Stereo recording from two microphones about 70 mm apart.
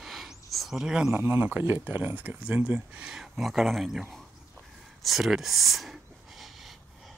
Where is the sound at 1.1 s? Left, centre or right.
Right; by 3.9 s centre.